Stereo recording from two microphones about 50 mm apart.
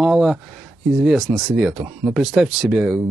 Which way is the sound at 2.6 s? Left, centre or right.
Centre.